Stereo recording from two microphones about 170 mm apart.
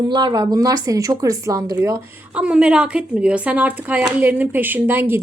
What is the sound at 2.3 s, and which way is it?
A woman's voice, 5° right (ahead or behind).